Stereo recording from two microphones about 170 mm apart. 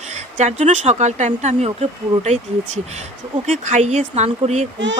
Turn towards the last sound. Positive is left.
turn(degrees=-40)  # may be behind; listen again after turning